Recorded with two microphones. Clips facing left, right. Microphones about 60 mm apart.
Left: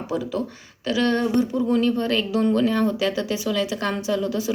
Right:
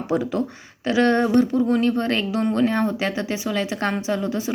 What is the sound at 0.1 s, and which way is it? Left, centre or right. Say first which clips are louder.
Speech: right 4 dB; right.